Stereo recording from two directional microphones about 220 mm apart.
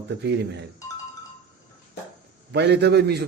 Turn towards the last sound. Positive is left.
turn(degrees=-50)  # may be behind; listen again after turning